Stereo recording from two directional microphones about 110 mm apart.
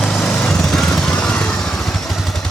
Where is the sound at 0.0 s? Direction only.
5° left (ahead or behind).